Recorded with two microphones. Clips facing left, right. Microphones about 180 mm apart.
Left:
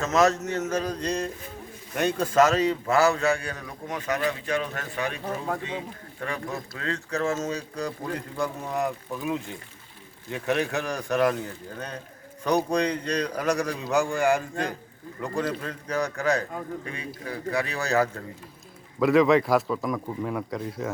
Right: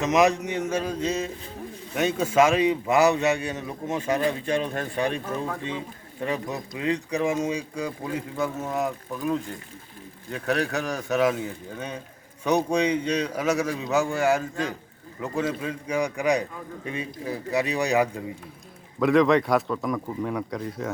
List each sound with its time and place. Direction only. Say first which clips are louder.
0.0 s a man's voice: right 1 dB; 15° right (ahead or behind)
18.9 s a man's voice: even; centre (ahead or behind)